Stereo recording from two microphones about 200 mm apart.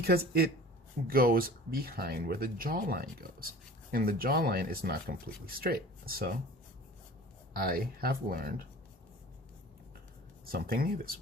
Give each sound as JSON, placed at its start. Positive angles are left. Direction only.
{"t": 0.0, "sound": "speech", "side_deg": -50}
{"t": 7.5, "sound": "speech", "side_deg": -45}
{"t": 10.4, "sound": "speech", "side_deg": -50}